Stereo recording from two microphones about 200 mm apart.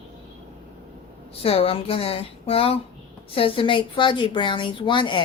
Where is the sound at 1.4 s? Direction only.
30° left (ahead or behind).